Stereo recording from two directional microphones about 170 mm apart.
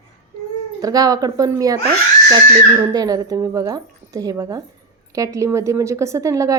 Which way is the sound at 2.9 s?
20° right (ahead or behind).